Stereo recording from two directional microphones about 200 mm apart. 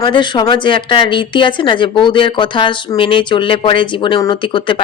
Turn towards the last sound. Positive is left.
turn(degrees=25)  # may be behind; listen again after turning